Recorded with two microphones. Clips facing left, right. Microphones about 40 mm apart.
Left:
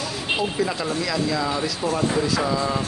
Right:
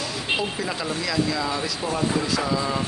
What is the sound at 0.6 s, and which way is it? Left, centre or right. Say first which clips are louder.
Speech: left 3 dB; centre.